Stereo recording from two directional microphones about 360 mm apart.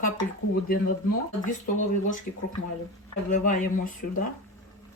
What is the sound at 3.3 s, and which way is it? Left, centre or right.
Speech, left.